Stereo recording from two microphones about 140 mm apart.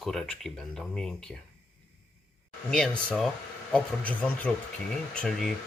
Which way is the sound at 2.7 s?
5° left (ahead or behind).